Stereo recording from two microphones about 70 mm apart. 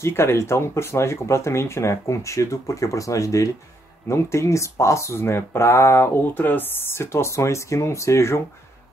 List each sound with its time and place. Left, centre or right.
0.0 s speech: left